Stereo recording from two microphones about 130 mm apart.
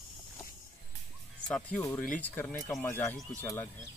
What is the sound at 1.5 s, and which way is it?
Speech, 10° left (ahead or behind).